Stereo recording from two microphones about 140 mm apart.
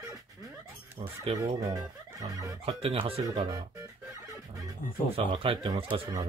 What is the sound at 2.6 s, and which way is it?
Speech, 45° right (ahead or behind).